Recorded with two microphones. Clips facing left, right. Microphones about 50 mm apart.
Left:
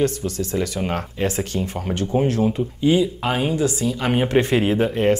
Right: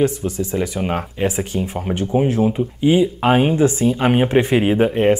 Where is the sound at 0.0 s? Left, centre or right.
Centre; by 4.1 s right.